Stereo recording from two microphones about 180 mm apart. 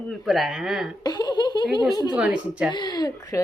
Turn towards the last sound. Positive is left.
turn(degrees=20)  # may be behind; listen again after turning